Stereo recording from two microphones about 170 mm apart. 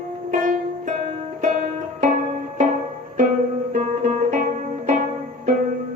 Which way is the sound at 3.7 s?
45° right (ahead or behind).